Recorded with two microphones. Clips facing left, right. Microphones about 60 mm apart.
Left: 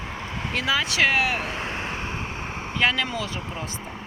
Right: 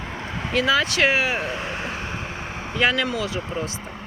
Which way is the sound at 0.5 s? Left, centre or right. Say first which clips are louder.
Right 5 dB; centre.